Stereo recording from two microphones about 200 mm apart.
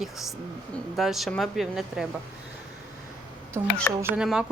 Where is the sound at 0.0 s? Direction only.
Centre (ahead or behind).